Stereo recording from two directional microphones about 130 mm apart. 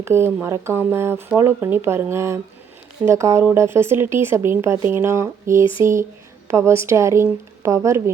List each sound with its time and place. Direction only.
0.0 s speech: 20° right (ahead or behind)